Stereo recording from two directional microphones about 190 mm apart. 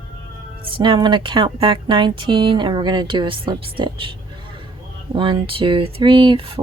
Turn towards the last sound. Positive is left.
turn(degrees=-30)  # may be behind; listen again after turning